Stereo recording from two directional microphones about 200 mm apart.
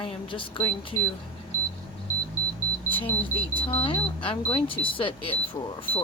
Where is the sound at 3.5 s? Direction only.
25° left (ahead or behind).